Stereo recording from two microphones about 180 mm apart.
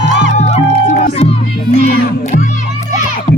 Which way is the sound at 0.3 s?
35° left (ahead or behind).